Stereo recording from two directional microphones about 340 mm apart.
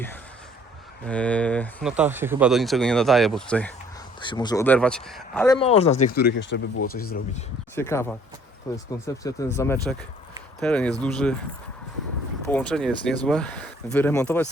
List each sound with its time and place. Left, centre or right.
1.0 s speech: centre
5.5 s speech: centre
7.8 s speech: centre
12.5 s speech: centre